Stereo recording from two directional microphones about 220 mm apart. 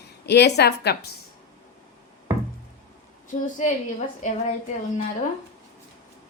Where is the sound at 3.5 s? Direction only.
35° left (ahead or behind).